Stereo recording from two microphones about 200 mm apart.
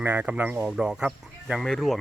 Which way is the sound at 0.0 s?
10° right (ahead or behind).